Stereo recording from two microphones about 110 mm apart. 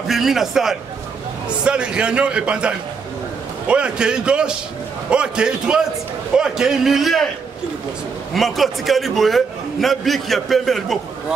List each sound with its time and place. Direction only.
0.1 s a man's voice: 5° right (ahead or behind)
8.4 s a man's voice: centre (ahead or behind)